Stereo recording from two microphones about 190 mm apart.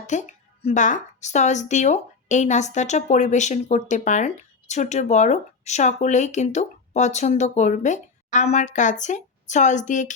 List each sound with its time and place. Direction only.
0.1 s a woman's voice: 40° left (ahead or behind)